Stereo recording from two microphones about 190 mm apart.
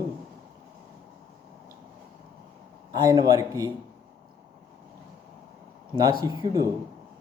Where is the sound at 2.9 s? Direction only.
20° right (ahead or behind).